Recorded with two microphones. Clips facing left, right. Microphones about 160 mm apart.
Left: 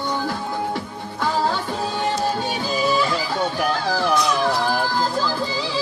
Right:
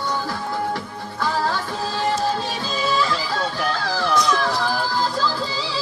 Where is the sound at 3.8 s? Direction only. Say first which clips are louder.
Right 1 dB; 20° left (ahead or behind).